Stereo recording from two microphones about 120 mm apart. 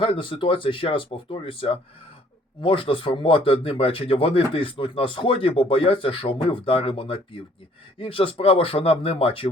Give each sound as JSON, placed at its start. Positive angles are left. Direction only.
{"t": 0.0, "sound": "speech", "side_deg": 45}